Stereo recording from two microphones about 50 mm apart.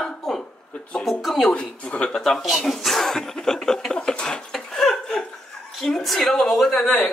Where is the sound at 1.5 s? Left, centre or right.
Left.